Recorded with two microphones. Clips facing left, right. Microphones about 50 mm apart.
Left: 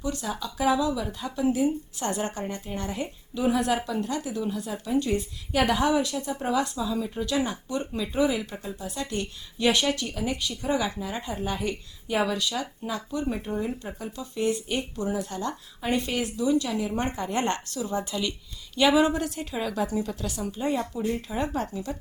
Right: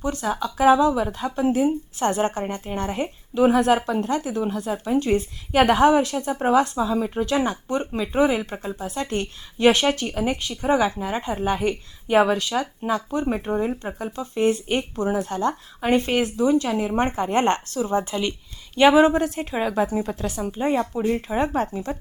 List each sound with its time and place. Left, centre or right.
0.0 s speech: right